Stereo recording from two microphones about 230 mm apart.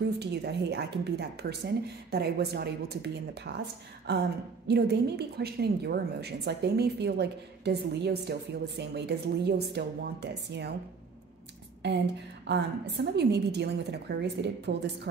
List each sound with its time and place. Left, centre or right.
0.2 s a woman's voice: right
12.4 s a woman's voice: right